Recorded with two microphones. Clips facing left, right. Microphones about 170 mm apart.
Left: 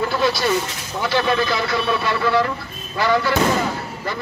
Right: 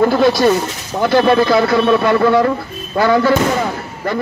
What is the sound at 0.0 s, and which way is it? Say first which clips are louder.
A man's voice: right 9 dB; 50° right (ahead or behind).